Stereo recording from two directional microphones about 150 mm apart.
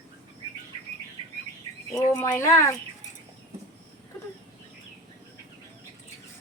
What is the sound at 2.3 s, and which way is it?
Speech, 25° left (ahead or behind).